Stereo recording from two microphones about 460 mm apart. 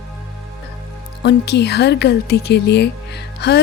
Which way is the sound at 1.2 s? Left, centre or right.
Left.